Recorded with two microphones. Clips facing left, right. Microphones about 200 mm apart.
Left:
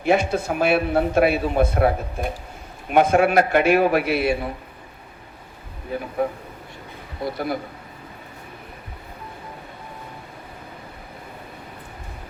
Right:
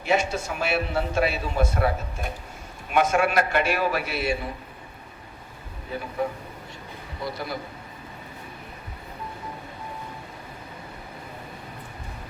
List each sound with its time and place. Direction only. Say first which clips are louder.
0.0 s a man's voice: left 5 dB; 55° left (ahead or behind)
6.2 s speech: left 4 dB; 55° left (ahead or behind)
7.3 s a man's voice: left 9 dB; 55° left (ahead or behind)